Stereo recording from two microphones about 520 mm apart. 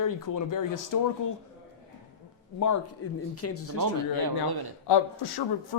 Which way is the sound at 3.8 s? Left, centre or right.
Right.